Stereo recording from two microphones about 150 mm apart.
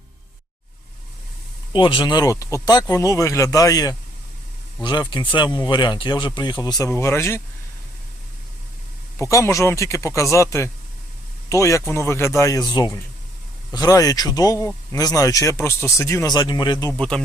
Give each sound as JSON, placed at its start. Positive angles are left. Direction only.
{"t": 1.7, "sound": "speech", "side_deg": 35}
{"t": 9.1, "sound": "speech", "side_deg": 20}
{"t": 17.0, "sound": "speech", "side_deg": 5}